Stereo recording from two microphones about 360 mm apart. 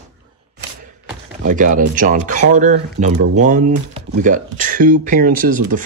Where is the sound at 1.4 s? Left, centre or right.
Right.